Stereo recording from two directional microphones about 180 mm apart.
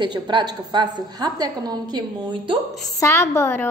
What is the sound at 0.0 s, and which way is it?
A woman's voice, 25° right (ahead or behind).